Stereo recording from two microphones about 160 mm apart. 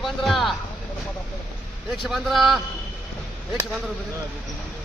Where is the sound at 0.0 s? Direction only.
Centre (ahead or behind).